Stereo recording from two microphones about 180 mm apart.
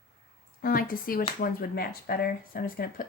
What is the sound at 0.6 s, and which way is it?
A woman's voice, 55° left (ahead or behind).